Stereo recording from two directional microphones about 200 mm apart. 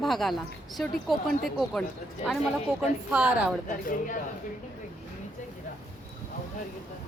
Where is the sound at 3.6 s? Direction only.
40° left (ahead or behind).